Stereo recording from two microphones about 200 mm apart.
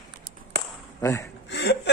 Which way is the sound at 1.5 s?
55° left (ahead or behind).